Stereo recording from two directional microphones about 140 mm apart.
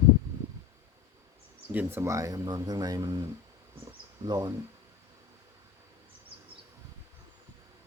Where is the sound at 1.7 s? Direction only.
15° right (ahead or behind).